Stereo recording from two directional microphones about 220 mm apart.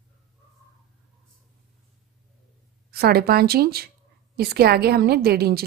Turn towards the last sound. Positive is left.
turn(degrees=-45)  # may be behind; listen again after turning